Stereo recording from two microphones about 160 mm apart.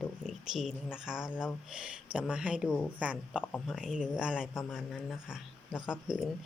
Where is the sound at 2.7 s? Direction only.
10° left (ahead or behind).